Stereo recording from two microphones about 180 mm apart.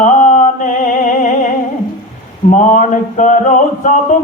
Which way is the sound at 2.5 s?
45° left (ahead or behind).